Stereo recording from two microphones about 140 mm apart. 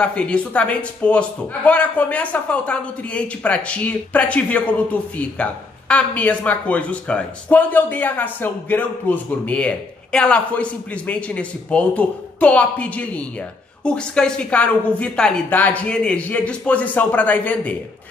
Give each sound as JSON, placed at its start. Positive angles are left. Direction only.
{"t": 0.0, "sound": "a man's voice", "side_deg": 10}